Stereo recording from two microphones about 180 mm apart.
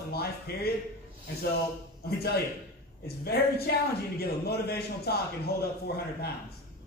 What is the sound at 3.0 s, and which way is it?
A man's voice, 60° left (ahead or behind).